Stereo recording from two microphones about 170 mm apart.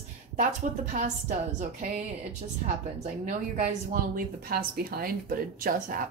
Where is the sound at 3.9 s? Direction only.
60° right (ahead or behind).